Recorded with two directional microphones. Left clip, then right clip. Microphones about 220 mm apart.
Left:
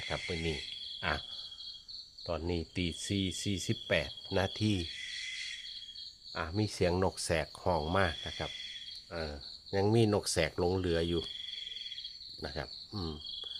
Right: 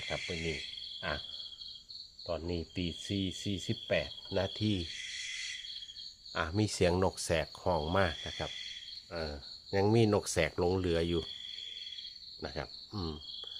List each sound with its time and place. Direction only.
0.1 s speech: 15° left (ahead or behind)
2.2 s speech: 15° left (ahead or behind)
6.3 s speech: 10° right (ahead or behind)
9.7 s speech: centre (ahead or behind)
12.4 s cricket: centre (ahead or behind)